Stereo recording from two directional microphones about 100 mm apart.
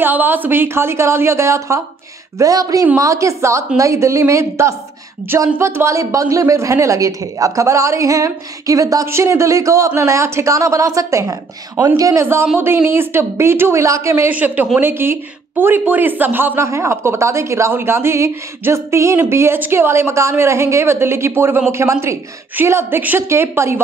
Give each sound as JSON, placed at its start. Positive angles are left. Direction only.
{"t": 0.0, "sound": "speech", "side_deg": -20}
{"t": 14.3, "sound": "speech", "side_deg": -15}